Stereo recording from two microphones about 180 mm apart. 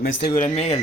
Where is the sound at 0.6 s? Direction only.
35° left (ahead or behind).